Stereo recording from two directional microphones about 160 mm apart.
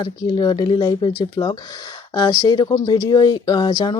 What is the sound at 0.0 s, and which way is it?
Speech, 25° left (ahead or behind).